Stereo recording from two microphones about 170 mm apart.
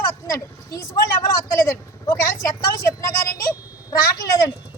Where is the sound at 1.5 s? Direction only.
15° left (ahead or behind).